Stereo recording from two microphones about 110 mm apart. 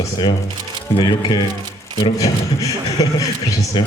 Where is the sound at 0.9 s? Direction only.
45° left (ahead or behind).